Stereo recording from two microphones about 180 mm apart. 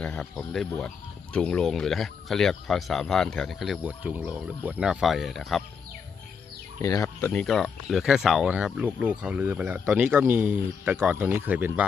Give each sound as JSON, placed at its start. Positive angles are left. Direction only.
{"t": 0.0, "sound": "speech", "side_deg": 5}
{"t": 6.8, "sound": "speech", "side_deg": 20}
{"t": 7.4, "sound": "speech", "side_deg": 0}